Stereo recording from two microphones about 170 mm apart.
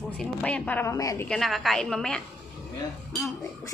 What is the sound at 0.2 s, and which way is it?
Speech, 5° left (ahead or behind).